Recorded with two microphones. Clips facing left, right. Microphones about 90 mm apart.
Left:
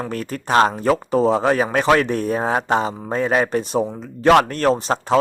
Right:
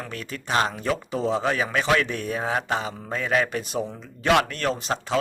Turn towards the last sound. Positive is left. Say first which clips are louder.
# left 8 dB
turn(degrees=40)  # may be behind; listen again after turning